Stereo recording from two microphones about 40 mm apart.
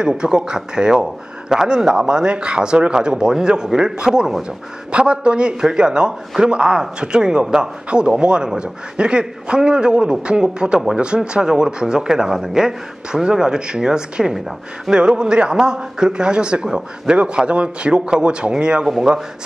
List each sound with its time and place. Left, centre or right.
0.0 s speech: centre